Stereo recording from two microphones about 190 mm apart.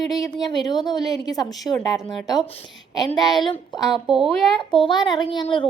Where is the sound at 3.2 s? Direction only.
20° left (ahead or behind).